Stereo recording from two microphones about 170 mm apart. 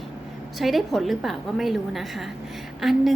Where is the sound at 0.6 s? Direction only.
Centre (ahead or behind).